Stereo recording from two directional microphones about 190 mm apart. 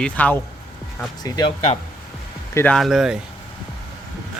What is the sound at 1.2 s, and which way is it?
Speech, 20° left (ahead or behind).